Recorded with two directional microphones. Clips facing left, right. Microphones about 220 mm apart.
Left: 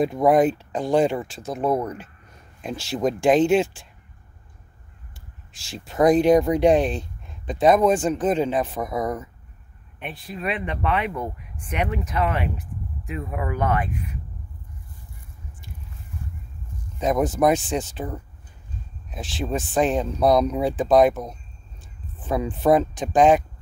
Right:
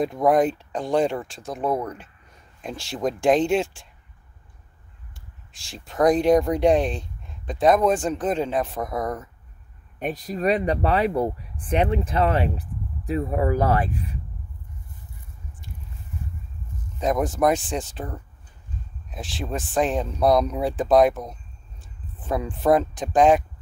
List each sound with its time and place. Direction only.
0.0 s speech: 5° left (ahead or behind)
5.5 s speech: 5° left (ahead or behind)
9.9 s speech: 40° right (ahead or behind)
17.0 s speech: centre (ahead or behind)